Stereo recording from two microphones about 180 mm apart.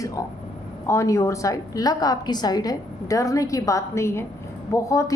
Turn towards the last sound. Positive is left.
turn(degrees=15)  # may be behind; listen again after turning